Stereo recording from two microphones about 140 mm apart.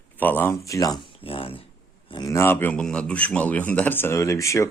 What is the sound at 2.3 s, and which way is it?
A man's voice, 15° left (ahead or behind).